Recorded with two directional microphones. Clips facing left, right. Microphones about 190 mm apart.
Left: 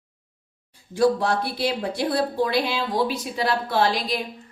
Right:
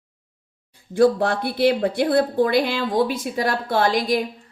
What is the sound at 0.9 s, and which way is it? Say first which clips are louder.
A woman's voice: right 3 dB; 55° right (ahead or behind).